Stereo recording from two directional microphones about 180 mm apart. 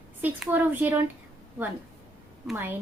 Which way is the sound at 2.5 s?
10° right (ahead or behind).